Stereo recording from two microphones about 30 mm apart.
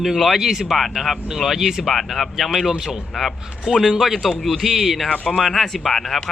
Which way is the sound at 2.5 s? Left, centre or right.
Centre.